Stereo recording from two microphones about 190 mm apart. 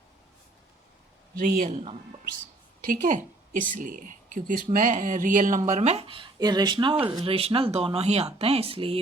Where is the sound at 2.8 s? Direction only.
45° right (ahead or behind).